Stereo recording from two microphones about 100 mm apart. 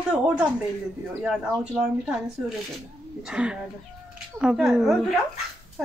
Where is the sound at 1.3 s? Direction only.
5° right (ahead or behind).